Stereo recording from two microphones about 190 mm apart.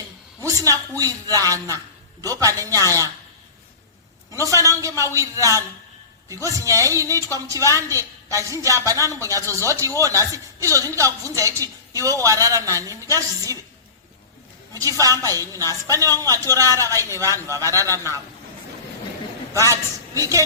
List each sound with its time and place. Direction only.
0.4 s a man's voice: 15° right (ahead or behind)
4.3 s a woman's voice: 15° right (ahead or behind)
14.7 s a woman's voice: 20° right (ahead or behind)
20.1 s a woman's voice: 15° right (ahead or behind)